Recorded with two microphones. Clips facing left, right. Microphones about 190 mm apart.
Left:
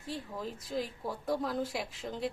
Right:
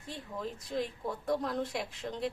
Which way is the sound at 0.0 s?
Centre (ahead or behind).